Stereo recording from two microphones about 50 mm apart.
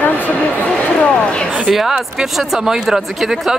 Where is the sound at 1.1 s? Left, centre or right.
Centre.